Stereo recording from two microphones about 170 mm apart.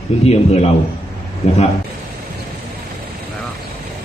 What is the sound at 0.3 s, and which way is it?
Speech, 40° left (ahead or behind).